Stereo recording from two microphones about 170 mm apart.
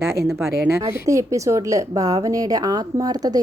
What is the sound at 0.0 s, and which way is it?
A woman's voice, 15° right (ahead or behind).